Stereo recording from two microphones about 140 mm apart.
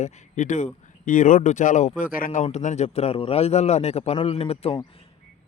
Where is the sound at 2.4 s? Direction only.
55° left (ahead or behind).